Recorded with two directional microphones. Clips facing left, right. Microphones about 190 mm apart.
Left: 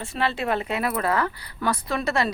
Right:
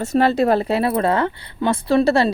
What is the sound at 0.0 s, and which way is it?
Speech, 40° right (ahead or behind).